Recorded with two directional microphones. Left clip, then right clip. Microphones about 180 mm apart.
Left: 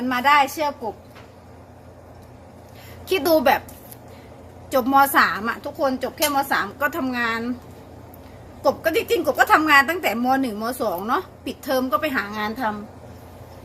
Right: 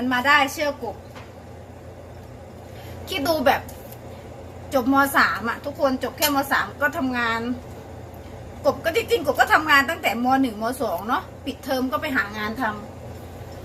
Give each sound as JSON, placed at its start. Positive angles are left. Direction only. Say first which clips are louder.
{"t": 0.1, "sound": "a woman's voice", "louder": "left 1 dB", "side_deg": 60}
{"t": 3.1, "sound": "a woman's voice", "louder": "left 3 dB", "side_deg": 60}
{"t": 4.7, "sound": "a woman's voice", "louder": "left 3 dB", "side_deg": 60}
{"t": 8.6, "sound": "a woman's voice", "louder": "left 1 dB", "side_deg": 60}